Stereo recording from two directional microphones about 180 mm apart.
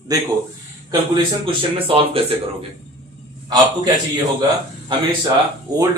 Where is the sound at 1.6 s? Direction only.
30° right (ahead or behind).